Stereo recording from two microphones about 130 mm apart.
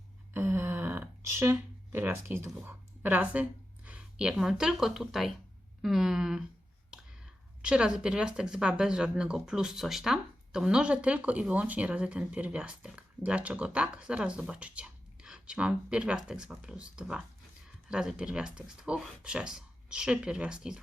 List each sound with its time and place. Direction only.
0.3 s a sound: 15° right (ahead or behind)
2.6 s a woman's voice: 15° right (ahead or behind)
6.9 s finger snapping: 5° right (ahead or behind)
7.6 s speech: 5° right (ahead or behind)